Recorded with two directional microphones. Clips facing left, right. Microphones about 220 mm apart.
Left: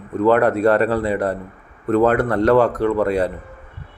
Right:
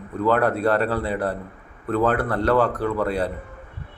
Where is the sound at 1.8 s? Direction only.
10° left (ahead or behind).